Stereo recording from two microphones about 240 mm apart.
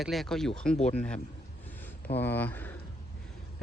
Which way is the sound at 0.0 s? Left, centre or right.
Centre.